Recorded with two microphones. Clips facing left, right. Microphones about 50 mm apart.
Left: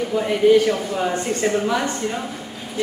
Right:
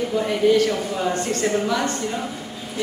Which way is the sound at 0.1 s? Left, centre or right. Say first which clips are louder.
Left 3 dB; centre.